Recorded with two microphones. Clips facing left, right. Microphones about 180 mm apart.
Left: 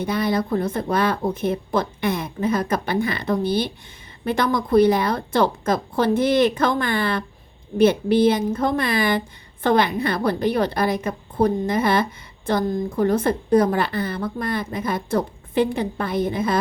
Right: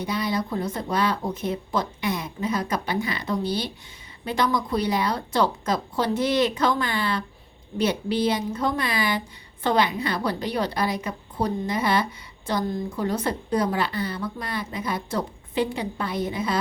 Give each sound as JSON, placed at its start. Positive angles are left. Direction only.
{"t": 0.0, "sound": "a woman's voice", "side_deg": 55}